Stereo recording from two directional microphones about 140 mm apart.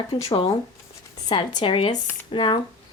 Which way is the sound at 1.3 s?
35° left (ahead or behind).